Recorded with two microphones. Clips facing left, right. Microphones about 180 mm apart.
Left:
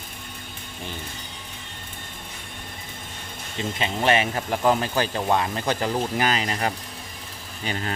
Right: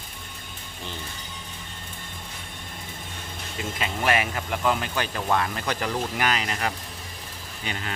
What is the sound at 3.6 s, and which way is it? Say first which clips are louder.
Speech: left 3 dB; 25° left (ahead or behind).